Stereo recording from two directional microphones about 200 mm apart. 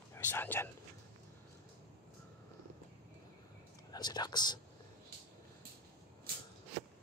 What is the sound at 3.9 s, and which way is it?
Whispering, 20° left (ahead or behind).